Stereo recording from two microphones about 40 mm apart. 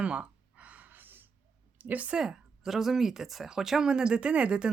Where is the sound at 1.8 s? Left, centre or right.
Right.